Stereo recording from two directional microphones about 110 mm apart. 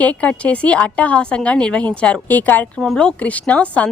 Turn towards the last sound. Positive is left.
turn(degrees=10)  # may be behind; listen again after turning